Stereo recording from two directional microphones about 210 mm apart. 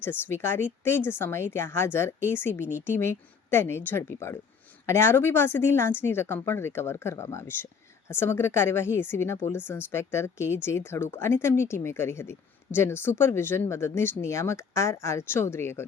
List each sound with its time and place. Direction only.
0.0 s speech: 10° left (ahead or behind)